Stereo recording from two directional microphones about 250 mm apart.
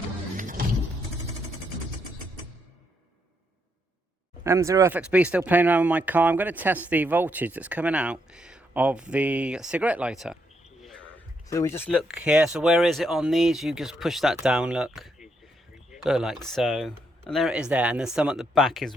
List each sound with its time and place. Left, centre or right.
0.3 s vehicle: right
4.4 s speech: centre
11.4 s speech: centre